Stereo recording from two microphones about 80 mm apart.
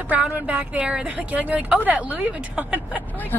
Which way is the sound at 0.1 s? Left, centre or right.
Centre.